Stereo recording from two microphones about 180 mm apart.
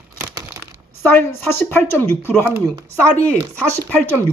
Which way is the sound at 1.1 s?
10° left (ahead or behind).